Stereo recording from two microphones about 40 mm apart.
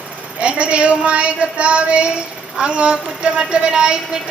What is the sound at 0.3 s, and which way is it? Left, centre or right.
A woman's voice, right.